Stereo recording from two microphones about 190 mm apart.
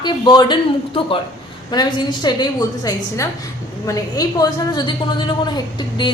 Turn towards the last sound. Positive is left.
turn(degrees=25)  # may be behind; listen again after turning